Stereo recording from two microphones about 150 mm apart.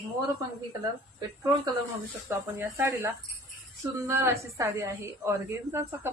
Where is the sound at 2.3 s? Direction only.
15° right (ahead or behind).